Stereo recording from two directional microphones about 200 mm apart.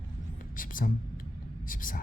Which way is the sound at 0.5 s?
45° left (ahead or behind).